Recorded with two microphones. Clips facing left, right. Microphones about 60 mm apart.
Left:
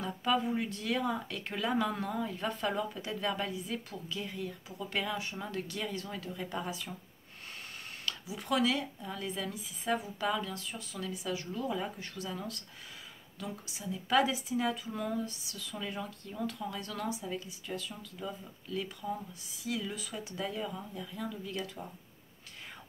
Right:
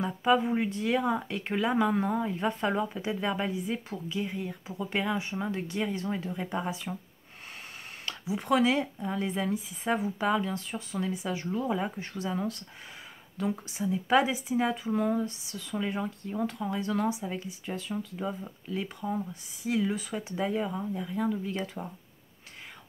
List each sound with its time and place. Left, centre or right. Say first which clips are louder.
0.0 s speech: right 6 dB; right
8.0 s speech: right 7 dB; right